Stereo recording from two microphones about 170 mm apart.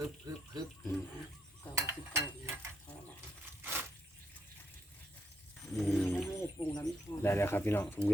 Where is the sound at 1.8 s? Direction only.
15° right (ahead or behind).